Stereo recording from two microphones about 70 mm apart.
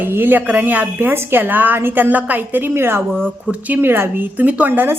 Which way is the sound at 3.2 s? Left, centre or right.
Right.